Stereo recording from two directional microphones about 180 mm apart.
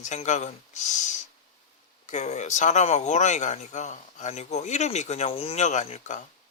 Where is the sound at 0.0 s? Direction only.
40° left (ahead or behind).